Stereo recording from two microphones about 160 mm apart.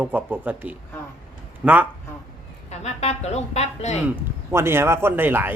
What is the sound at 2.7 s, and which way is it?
A woman's voice, 40° left (ahead or behind).